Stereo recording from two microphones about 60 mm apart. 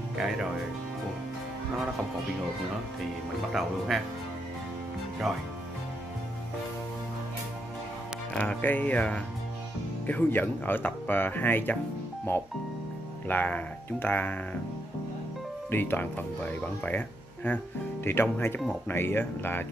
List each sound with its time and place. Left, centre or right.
3.5 s speech: centre
5.3 s speech: centre
8.4 s speech: left
15.7 s speech: left